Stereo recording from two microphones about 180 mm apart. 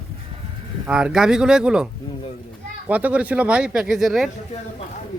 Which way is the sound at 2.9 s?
10° right (ahead or behind).